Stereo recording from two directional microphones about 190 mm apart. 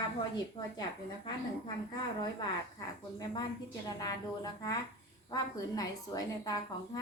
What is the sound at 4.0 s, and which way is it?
A woman's voice, 20° left (ahead or behind).